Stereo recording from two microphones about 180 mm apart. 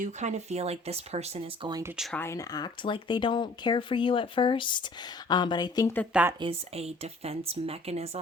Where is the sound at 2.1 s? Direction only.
15° left (ahead or behind).